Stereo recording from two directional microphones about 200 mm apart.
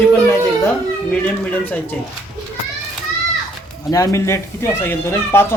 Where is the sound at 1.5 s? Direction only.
10° left (ahead or behind).